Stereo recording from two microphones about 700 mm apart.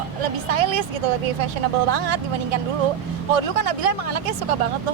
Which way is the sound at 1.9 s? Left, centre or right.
Right.